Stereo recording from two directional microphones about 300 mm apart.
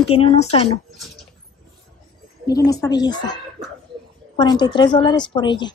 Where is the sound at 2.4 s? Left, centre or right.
Centre.